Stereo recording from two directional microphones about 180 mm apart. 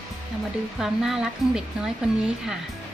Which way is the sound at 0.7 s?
Centre (ahead or behind).